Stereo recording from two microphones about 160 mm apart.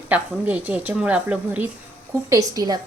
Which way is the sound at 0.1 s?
10° right (ahead or behind).